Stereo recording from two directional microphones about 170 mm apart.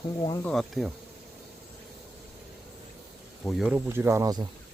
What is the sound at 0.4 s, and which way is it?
Insect, centre (ahead or behind).